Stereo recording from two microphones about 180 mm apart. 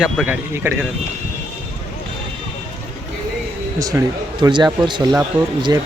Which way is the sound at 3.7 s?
20° right (ahead or behind).